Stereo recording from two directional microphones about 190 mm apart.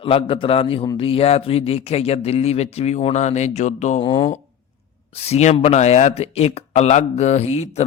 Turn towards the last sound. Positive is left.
turn(degrees=35)  # may be behind; listen again after turning